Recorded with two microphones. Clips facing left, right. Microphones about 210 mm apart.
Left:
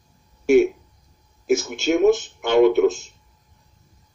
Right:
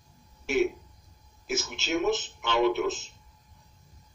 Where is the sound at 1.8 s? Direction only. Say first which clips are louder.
Left 10 dB; 50° left (ahead or behind).